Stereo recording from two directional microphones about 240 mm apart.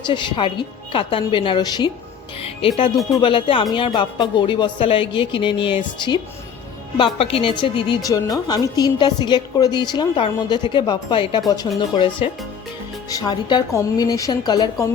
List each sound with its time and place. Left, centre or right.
0.0 s a woman's voice: centre